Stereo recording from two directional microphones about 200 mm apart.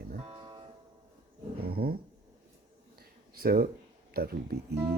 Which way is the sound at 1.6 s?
50° right (ahead or behind).